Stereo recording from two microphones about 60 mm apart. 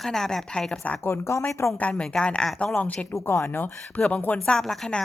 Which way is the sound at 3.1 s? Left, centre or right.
Left.